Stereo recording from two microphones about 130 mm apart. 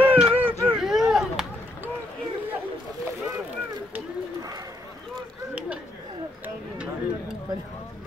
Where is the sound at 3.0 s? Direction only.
20° right (ahead or behind).